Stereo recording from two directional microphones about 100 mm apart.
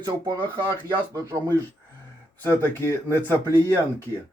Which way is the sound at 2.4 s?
20° left (ahead or behind).